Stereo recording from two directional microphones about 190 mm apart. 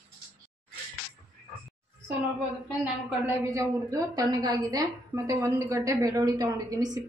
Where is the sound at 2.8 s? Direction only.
15° right (ahead or behind).